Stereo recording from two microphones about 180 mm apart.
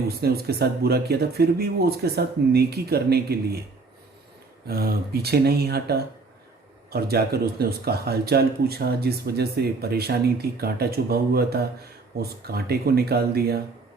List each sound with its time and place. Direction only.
0.2 s speech: 60° right (ahead or behind)
4.6 s speech: 60° right (ahead or behind)